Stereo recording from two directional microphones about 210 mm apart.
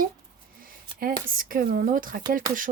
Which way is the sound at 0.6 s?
45° right (ahead or behind).